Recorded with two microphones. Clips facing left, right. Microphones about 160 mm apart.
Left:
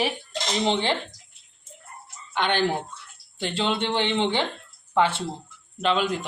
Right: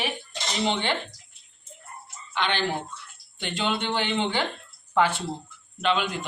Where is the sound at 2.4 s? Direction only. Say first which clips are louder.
Left 3 dB; 50° left (ahead or behind).